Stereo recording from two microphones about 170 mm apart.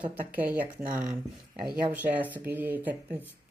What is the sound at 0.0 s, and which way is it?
Speech, 10° right (ahead or behind).